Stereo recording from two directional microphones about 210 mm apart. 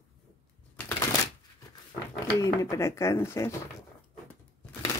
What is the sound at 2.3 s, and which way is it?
Speech, 15° left (ahead or behind).